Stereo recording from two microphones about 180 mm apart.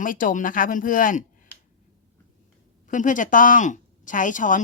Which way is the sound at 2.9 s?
45° left (ahead or behind).